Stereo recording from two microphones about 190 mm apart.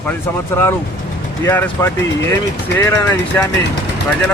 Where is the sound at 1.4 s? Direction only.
10° left (ahead or behind).